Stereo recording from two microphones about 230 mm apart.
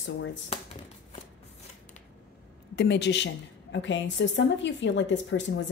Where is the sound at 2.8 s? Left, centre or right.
Left.